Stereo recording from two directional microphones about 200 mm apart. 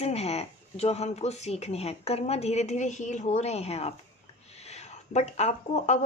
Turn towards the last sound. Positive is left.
turn(degrees=35)  # may be behind; listen again after turning